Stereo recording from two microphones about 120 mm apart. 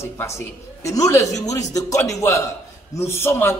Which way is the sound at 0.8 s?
25° left (ahead or behind).